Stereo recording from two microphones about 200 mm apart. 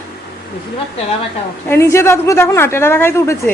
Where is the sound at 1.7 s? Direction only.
15° left (ahead or behind).